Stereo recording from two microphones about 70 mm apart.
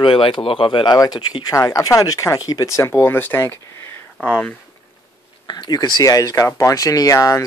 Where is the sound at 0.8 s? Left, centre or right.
Left.